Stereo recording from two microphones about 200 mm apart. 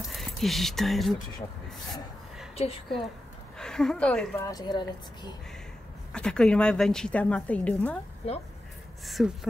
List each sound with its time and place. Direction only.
0.0 s speech: centre (ahead or behind)
2.5 s a woman's voice: 30° left (ahead or behind)
3.5 s speech: 5° left (ahead or behind)
4.5 s a woman's voice: 20° left (ahead or behind)
6.1 s a woman's voice: 5° left (ahead or behind)
8.2 s a woman's voice: 30° left (ahead or behind)
9.0 s a woman's voice: centre (ahead or behind)